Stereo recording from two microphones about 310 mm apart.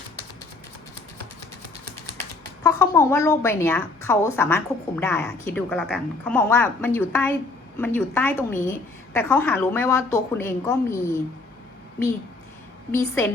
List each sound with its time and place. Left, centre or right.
2.6 s a woman's voice: centre